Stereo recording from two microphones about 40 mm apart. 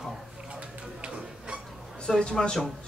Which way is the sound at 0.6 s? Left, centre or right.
Right.